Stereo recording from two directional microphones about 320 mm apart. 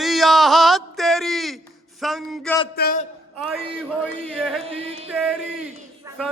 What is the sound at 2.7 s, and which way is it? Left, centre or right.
Speech, left.